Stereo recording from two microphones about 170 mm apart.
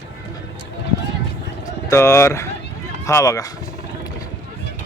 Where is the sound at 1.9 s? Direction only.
15° left (ahead or behind).